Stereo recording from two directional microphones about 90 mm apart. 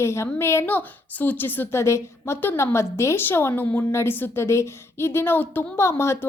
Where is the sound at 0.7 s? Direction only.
20° left (ahead or behind).